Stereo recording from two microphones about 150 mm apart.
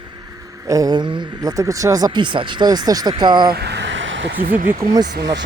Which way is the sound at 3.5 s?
90° right.